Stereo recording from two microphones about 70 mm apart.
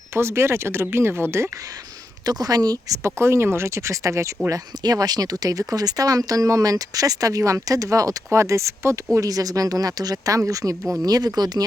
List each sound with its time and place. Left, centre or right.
0.1 s speech: right
2.2 s speech: right
3.2 s speech: right
4.8 s speech: right
9.2 s speech: right
11.0 s speech: right